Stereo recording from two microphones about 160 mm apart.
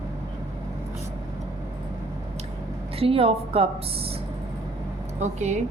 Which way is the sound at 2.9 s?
35° right (ahead or behind).